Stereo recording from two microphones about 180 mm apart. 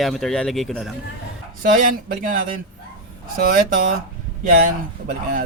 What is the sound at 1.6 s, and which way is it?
Speech, 50° right (ahead or behind).